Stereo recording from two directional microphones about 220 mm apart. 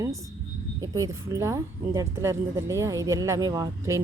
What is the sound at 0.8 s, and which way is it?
Speech, 15° right (ahead or behind).